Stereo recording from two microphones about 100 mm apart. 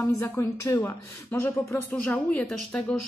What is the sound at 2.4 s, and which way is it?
Speech, 10° left (ahead or behind).